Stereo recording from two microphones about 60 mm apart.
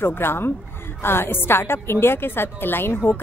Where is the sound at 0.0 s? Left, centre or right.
Left.